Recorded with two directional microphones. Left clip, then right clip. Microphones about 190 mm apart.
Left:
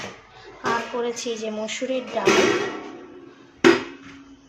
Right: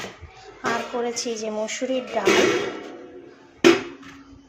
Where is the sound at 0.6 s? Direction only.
10° right (ahead or behind).